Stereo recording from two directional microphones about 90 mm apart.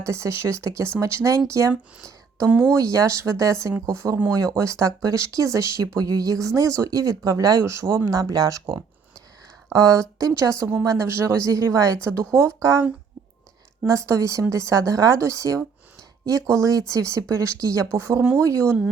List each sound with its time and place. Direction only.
0.0 s speech: 35° right (ahead or behind)
8.2 s speech: 45° right (ahead or behind)
9.7 s speech: 40° right (ahead or behind)
13.8 s speech: 35° right (ahead or behind)
18.2 s speech: 20° right (ahead or behind)
18.4 s speech: 35° right (ahead or behind)